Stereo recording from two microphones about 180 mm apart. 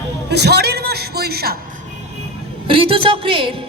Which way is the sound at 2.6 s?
30° right (ahead or behind).